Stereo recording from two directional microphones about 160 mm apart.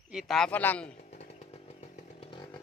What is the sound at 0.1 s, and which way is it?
Speech, centre (ahead or behind).